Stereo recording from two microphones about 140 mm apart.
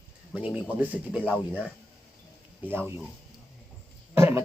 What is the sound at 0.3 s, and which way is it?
Speech, 10° right (ahead or behind).